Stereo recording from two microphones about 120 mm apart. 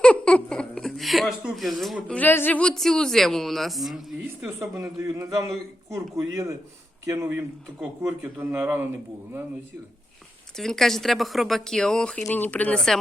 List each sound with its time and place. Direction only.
0.0 s giggle: 10° left (ahead or behind)
2.0 s speech: 15° left (ahead or behind)
4.4 s a man's voice: 25° right (ahead or behind)
10.6 s speech: 5° left (ahead or behind)